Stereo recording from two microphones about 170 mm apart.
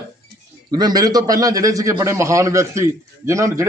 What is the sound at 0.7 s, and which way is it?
A man's voice, 25° right (ahead or behind).